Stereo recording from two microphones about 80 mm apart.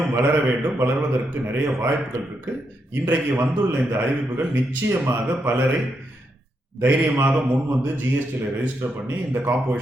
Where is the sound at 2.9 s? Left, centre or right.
Right.